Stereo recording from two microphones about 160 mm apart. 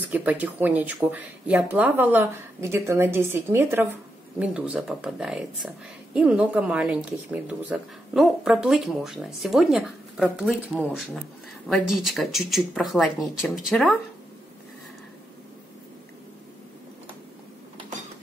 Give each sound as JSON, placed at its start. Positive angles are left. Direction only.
{"t": 0.1, "sound": "speech", "side_deg": -10}